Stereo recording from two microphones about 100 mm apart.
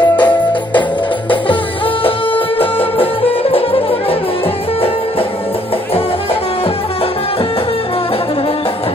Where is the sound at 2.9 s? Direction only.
70° left (ahead or behind).